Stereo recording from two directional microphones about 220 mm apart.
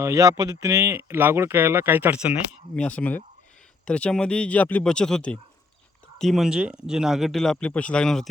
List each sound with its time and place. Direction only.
0.0 s speech: 15° right (ahead or behind)
2.8 s speech: 5° left (ahead or behind)